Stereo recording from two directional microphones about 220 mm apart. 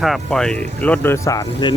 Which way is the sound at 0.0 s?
Centre (ahead or behind).